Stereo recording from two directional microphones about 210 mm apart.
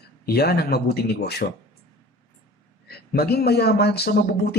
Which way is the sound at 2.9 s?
50° left (ahead or behind).